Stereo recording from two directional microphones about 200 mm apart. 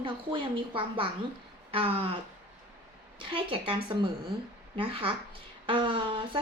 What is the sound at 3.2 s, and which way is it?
A woman's voice, 25° right (ahead or behind).